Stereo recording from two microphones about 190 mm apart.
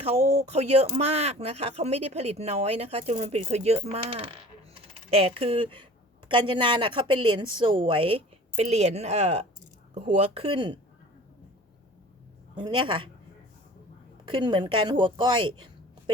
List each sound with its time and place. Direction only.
0.0 s a woman's voice: 35° right (ahead or behind)
12.5 s a woman's voice: 25° right (ahead or behind)
14.3 s a woman's voice: 25° right (ahead or behind)